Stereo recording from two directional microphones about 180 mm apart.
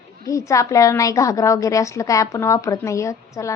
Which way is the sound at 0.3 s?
15° left (ahead or behind).